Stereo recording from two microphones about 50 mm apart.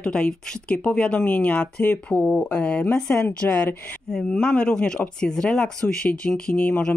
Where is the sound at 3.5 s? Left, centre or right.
Left.